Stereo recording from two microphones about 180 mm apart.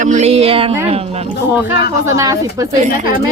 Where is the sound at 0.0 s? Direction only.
40° right (ahead or behind).